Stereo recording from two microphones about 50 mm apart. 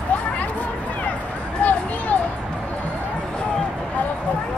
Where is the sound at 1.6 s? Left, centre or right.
Left.